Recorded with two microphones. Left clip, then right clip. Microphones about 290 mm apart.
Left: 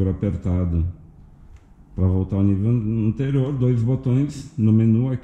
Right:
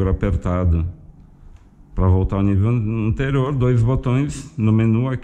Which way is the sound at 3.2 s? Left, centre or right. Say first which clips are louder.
Right 5 dB; centre.